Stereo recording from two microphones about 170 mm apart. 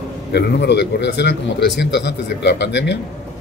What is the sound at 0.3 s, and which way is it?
Speech, 80° left.